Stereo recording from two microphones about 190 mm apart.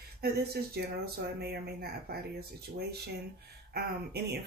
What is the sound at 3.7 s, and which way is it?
Speech, 60° right (ahead or behind).